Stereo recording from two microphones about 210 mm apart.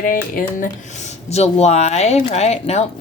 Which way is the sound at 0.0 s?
40° left (ahead or behind).